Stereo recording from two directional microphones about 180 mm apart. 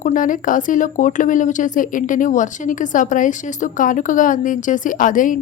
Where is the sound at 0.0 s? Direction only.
45° left (ahead or behind).